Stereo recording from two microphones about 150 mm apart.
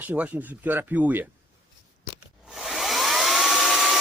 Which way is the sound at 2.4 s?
Centre (ahead or behind).